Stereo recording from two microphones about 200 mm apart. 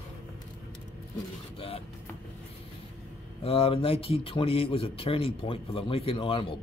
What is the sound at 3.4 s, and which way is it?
Speech, 30° left (ahead or behind).